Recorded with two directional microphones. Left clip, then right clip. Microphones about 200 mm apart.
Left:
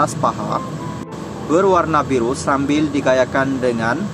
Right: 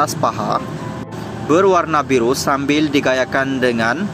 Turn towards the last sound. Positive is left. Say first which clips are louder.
# right 2 dB
turn(degrees=-15)  # may be behind; listen again after turning